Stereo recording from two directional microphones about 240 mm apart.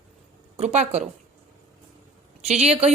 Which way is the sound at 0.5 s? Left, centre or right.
Right.